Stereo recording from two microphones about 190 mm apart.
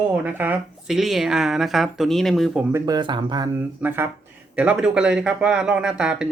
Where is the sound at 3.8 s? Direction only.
10° right (ahead or behind).